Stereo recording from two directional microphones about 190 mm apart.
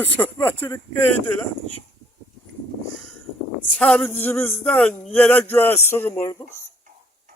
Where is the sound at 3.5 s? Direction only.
5° left (ahead or behind).